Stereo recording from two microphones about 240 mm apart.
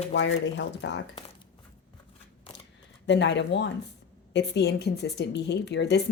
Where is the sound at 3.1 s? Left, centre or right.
Left.